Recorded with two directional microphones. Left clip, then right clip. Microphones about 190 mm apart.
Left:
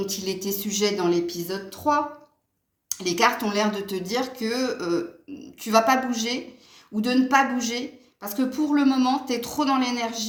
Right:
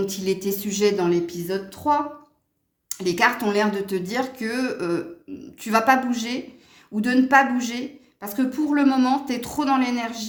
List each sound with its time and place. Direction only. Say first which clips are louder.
0.0 s a woman's voice: right 4 dB; 45° right (ahead or behind)
3.0 s a woman's voice: right 1 dB; 45° right (ahead or behind)